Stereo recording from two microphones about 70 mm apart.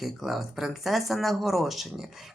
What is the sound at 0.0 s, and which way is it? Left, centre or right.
Speech, centre.